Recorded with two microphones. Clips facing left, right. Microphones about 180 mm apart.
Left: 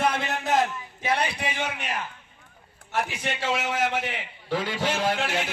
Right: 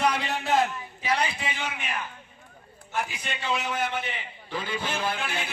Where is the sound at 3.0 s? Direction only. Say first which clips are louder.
Left 3 dB; 75° left (ahead or behind).